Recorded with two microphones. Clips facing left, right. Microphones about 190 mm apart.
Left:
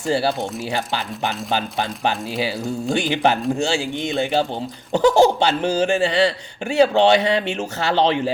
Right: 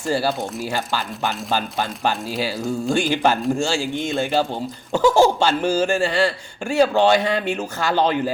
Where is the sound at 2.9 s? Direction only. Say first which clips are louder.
Even; 20° left (ahead or behind).